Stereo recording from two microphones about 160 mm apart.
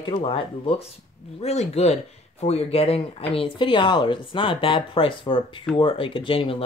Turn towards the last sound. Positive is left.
turn(degrees=30)  # may be behind; listen again after turning